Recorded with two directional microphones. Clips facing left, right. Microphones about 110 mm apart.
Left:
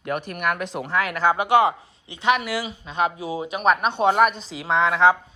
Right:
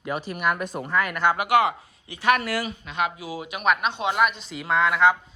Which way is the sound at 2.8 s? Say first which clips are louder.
Left 4 dB; 30° left (ahead or behind).